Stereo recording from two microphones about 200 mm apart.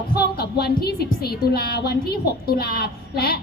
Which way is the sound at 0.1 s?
50° left (ahead or behind).